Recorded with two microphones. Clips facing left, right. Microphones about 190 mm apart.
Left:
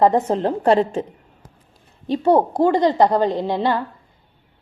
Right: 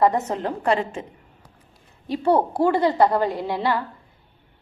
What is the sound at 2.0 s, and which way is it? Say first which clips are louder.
A woman's voice: left 4 dB; 25° left (ahead or behind).